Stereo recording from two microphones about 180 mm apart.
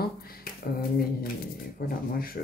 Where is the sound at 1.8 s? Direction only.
55° left (ahead or behind).